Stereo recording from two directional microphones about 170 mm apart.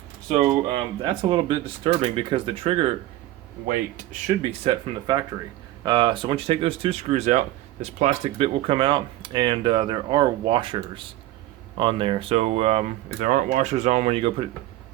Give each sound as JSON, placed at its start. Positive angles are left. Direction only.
{"t": 0.3, "sound": "speech", "side_deg": -35}
{"t": 3.7, "sound": "speech", "side_deg": -55}
{"t": 4.6, "sound": "speech", "side_deg": -30}